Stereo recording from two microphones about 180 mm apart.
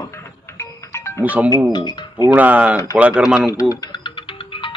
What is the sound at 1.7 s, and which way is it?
Speech, 25° left (ahead or behind).